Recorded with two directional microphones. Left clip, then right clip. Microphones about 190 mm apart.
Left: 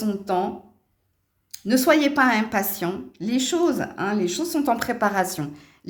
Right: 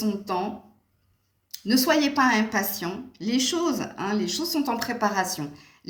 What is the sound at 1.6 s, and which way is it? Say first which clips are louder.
Speech: left 3 dB; 40° left (ahead or behind).